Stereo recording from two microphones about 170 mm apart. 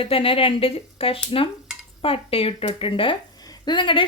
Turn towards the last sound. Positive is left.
turn(degrees=30)  # may be behind; listen again after turning